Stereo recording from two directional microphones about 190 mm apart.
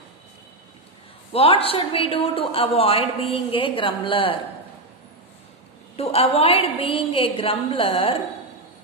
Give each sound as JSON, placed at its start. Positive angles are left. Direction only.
{"t": 1.3, "sound": "a woman's voice", "side_deg": 30}
{"t": 5.9, "sound": "a woman's voice", "side_deg": 30}